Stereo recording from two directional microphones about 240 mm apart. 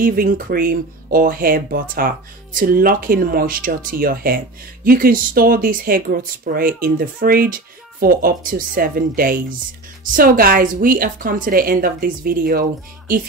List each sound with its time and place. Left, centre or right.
0.0 s speech: right